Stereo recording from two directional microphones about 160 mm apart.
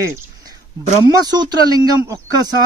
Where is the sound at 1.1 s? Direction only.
25° right (ahead or behind).